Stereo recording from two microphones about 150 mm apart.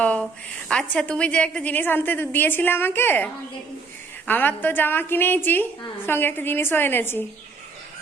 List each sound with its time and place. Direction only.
0.0 s a sound: 10° left (ahead or behind)
0.7 s a woman's voice: 5° left (ahead or behind)
4.3 s a woman's voice: 10° left (ahead or behind)